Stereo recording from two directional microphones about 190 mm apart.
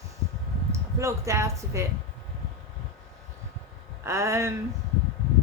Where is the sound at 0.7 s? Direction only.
15° right (ahead or behind).